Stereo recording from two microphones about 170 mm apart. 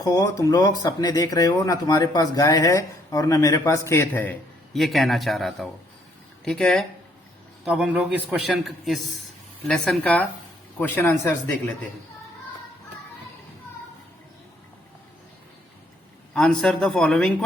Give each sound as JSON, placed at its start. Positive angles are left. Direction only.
{"t": 0.0, "sound": "a man's voice", "side_deg": 20}
{"t": 16.3, "sound": "a man's voice", "side_deg": 5}